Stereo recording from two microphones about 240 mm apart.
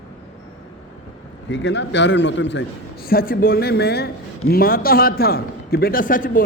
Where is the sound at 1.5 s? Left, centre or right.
Left.